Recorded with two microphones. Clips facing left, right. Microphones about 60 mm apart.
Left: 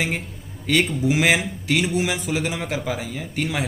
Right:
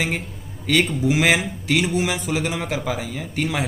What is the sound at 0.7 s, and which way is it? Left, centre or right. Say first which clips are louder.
Speech: right 1 dB; centre.